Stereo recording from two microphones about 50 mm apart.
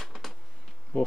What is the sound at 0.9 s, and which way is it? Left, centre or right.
Insect, left.